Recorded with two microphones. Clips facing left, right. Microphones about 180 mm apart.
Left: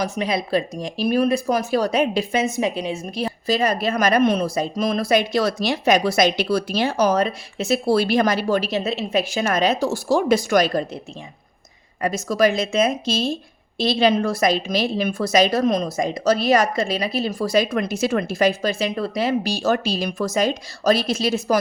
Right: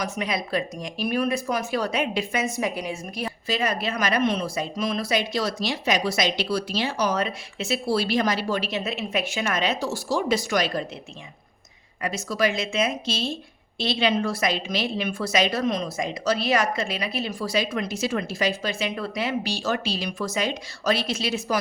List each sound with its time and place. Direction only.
0.0 s speech: 30° left (ahead or behind); by 10.8 s 45° left (ahead or behind)
12.0 s speech: 45° left (ahead or behind)